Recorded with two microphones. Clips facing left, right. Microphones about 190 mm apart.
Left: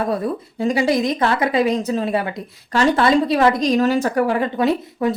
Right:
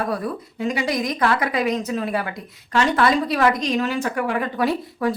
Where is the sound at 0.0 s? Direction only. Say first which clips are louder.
Left 4 dB; 25° left (ahead or behind).